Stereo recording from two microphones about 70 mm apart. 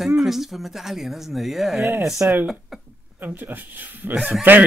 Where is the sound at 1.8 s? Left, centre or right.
Right.